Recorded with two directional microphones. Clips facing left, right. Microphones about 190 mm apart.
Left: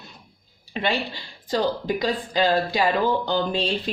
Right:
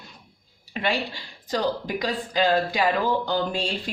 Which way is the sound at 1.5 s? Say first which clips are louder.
Left 2 dB; 25° left (ahead or behind).